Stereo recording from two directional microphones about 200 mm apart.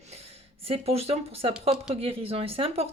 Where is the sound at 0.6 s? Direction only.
30° right (ahead or behind).